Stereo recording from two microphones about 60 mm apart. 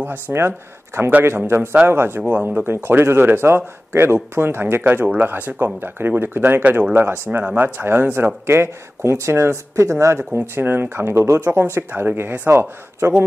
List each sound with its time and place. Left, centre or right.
0.3 s speech: right
2.2 s speech: right